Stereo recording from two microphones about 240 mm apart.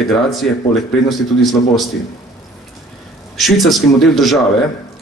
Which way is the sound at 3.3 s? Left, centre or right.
Centre.